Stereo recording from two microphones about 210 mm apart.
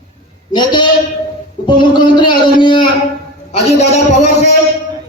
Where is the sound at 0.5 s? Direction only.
20° left (ahead or behind).